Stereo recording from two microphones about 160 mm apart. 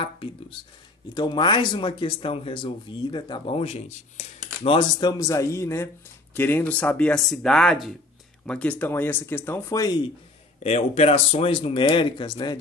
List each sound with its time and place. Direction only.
0.0 s a sound: 35° left (ahead or behind)
1.1 s speech: 30° left (ahead or behind)
4.6 s a man's voice: 25° left (ahead or behind)
10.6 s speech: 40° left (ahead or behind)